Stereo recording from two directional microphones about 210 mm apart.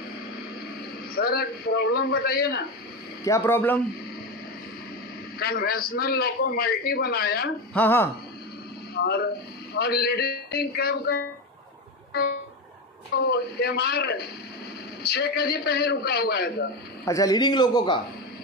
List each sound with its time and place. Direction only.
1.1 s a man's voice: 45° left (ahead or behind)
3.3 s speech: 10° left (ahead or behind)
5.4 s a man's voice: 45° left (ahead or behind)
7.7 s speech: 10° left (ahead or behind)
8.9 s a man's voice: 50° left (ahead or behind)
13.1 s a man's voice: 50° left (ahead or behind)
17.0 s a man's voice: 15° left (ahead or behind)